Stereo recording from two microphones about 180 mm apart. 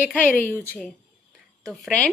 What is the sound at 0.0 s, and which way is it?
A woman's voice, 10° left (ahead or behind).